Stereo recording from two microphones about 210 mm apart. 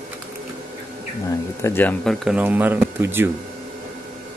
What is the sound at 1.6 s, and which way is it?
Speech, 10° left (ahead or behind).